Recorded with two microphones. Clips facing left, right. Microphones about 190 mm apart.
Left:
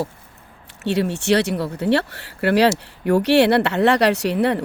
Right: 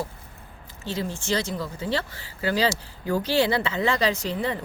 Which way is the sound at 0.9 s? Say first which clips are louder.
Left 9 dB; 70° left (ahead or behind).